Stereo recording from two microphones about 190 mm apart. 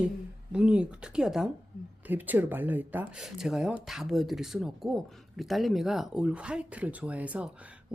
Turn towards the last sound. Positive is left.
turn(degrees=-5)  # may be behind; listen again after turning